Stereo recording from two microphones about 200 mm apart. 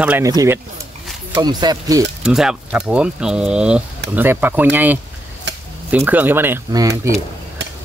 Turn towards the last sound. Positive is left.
turn(degrees=-15)  # may be behind; listen again after turning